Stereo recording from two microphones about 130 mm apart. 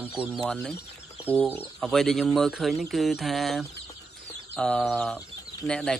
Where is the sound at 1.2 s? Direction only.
15° left (ahead or behind).